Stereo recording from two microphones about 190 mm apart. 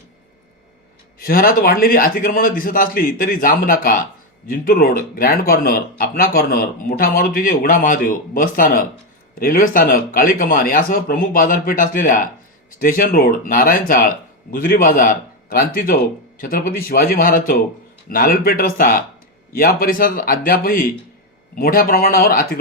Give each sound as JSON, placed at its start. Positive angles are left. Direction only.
{"t": 1.2, "sound": "speech", "side_deg": 50}